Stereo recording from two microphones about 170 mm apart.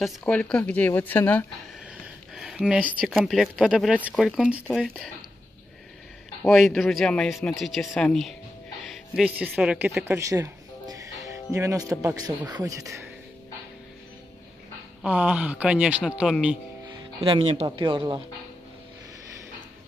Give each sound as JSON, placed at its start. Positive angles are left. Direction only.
{"t": 0.0, "sound": "speech", "side_deg": 5}
{"t": 2.3, "sound": "speech", "side_deg": -5}
{"t": 6.5, "sound": "speech", "side_deg": 0}
{"t": 10.0, "sound": "speech", "side_deg": -15}
{"t": 15.0, "sound": "speech", "side_deg": -5}
{"t": 16.8, "sound": "music", "side_deg": -30}
{"t": 17.6, "sound": "speech", "side_deg": -30}